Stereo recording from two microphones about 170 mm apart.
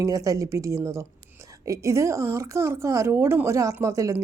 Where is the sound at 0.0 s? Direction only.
20° right (ahead or behind).